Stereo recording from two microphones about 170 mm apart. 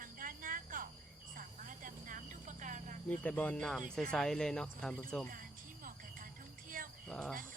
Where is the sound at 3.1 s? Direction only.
10° left (ahead or behind).